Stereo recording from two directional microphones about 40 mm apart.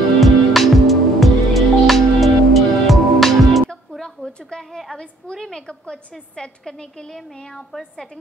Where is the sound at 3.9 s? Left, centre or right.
Centre.